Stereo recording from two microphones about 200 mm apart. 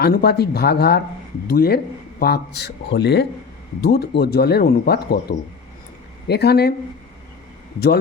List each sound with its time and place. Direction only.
0.0 s a man's voice: 50° left (ahead or behind)
6.2 s speech: 55° left (ahead or behind)